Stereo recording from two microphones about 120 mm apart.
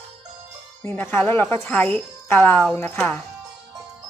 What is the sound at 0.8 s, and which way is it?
Speech, 20° left (ahead or behind).